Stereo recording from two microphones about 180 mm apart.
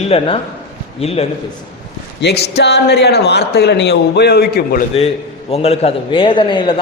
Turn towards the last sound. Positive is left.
turn(degrees=30)  # may be behind; listen again after turning